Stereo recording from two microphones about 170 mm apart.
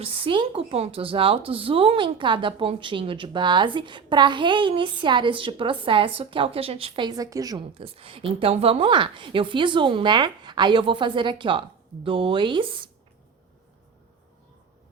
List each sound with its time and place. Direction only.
0.0 s speech: 35° right (ahead or behind)
7.7 s speech: 35° right (ahead or behind)